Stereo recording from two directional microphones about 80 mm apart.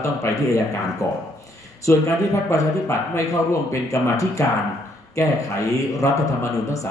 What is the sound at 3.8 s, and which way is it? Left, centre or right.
Speech, left.